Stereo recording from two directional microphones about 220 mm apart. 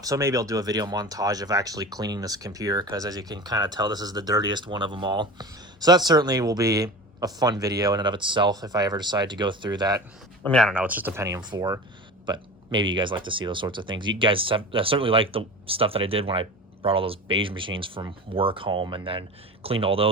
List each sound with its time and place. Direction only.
0.0 s speech: 15° right (ahead or behind)
10.4 s speech: 5° left (ahead or behind)
10.8 s speech: 10° right (ahead or behind); by 20.1 s 25° right (ahead or behind)